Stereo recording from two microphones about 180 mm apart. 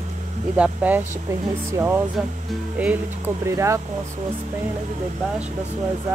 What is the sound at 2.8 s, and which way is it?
Speech, 10° right (ahead or behind).